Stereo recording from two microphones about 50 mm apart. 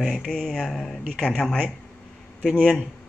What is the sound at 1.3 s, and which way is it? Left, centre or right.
Speech, centre.